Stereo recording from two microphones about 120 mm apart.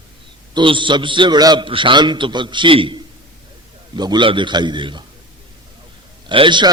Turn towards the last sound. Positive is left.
turn(degrees=-40)  # may be behind; listen again after turning